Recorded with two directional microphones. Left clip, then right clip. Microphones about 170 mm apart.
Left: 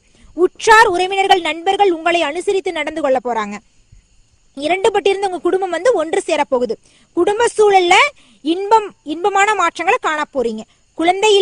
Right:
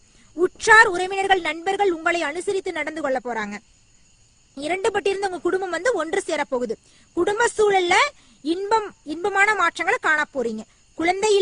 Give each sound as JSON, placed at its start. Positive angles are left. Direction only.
{"t": 0.3, "sound": "a woman's voice", "side_deg": 30}